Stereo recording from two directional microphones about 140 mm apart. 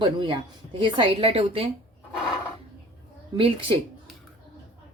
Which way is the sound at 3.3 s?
40° right (ahead or behind).